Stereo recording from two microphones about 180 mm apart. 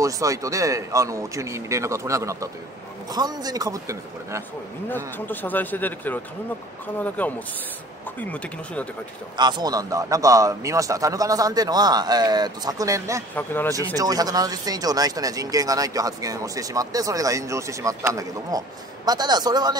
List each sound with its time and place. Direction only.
0.0 s a man's voice: 20° right (ahead or behind)
4.8 s a man's voice: 10° left (ahead or behind)
9.4 s speech: 25° right (ahead or behind)
13.3 s a man's voice: 10° left (ahead or behind)
13.7 s speech: 20° right (ahead or behind)